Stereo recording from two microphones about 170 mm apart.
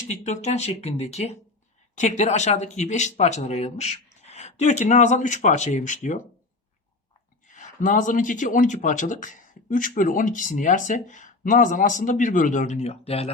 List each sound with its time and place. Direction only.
0.1 s speech: 45° left (ahead or behind)
7.4 s speech: 50° left (ahead or behind)